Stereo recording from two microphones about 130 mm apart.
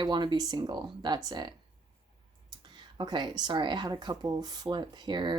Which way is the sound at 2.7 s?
35° right (ahead or behind).